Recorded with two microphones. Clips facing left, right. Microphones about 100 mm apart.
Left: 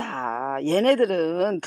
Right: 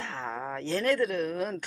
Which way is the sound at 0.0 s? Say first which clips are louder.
Left 8 dB; 50° left (ahead or behind).